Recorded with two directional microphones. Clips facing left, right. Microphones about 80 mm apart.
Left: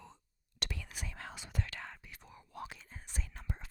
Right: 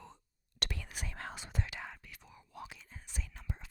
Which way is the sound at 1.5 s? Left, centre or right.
Centre.